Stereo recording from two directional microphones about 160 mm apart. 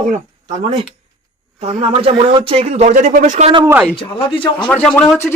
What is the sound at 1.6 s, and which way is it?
Speech, 40° right (ahead or behind).